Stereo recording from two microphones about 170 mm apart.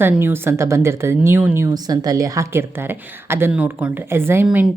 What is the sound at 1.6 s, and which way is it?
Speech, 25° right (ahead or behind).